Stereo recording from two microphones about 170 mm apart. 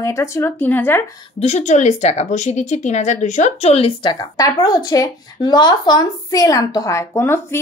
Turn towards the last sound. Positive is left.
turn(degrees=15)  # may be behind; listen again after turning